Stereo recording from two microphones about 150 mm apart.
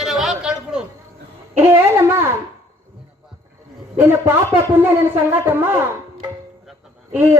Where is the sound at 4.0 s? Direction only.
15° right (ahead or behind).